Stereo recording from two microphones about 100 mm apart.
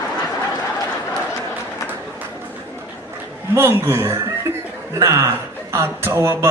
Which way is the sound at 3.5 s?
20° right (ahead or behind).